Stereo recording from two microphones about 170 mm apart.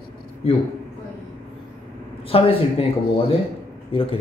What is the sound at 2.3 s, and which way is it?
Speech, 35° left (ahead or behind).